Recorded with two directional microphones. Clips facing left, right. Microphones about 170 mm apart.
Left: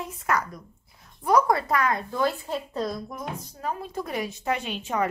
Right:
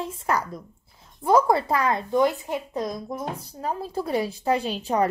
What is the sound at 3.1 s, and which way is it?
A woman's voice, 30° right (ahead or behind).